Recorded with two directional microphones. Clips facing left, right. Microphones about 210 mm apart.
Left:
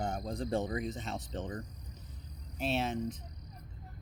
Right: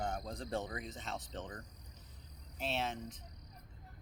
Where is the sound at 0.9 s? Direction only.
10° left (ahead or behind).